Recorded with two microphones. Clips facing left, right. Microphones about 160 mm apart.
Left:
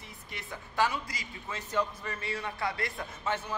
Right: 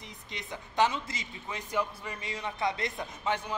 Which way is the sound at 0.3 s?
20° right (ahead or behind).